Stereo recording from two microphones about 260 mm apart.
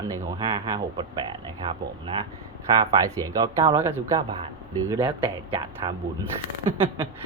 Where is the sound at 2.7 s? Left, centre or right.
Centre.